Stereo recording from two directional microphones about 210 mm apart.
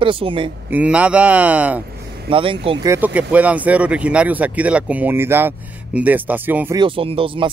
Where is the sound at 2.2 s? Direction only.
25° right (ahead or behind).